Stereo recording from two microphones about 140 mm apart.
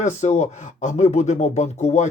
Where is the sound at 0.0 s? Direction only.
55° left (ahead or behind).